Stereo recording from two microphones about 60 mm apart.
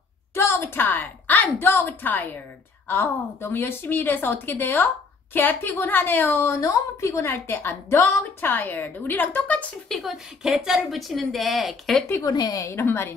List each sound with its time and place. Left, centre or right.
0.3 s a sound: left
2.9 s a woman's voice: left
6.6 s a woman's voice: left
9.8 s a woman's voice: centre
12.2 s a woman's voice: left
12.7 s a woman's voice: left